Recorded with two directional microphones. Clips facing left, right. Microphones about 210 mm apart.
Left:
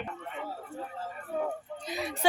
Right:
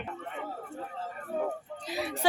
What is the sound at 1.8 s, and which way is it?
Speech, 5° right (ahead or behind).